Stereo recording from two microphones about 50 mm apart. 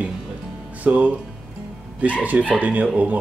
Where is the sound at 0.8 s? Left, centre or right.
Right.